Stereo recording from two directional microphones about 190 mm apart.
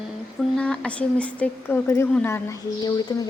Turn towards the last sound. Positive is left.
turn(degrees=15)  # may be behind; listen again after turning